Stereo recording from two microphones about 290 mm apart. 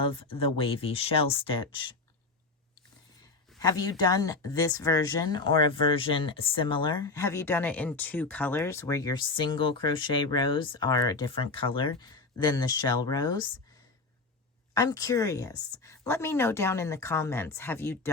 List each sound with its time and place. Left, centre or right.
0.0 s speech: centre
3.6 s speech: centre
14.7 s speech: centre